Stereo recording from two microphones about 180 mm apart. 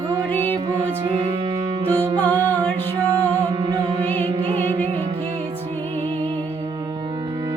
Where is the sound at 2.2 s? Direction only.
20° right (ahead or behind).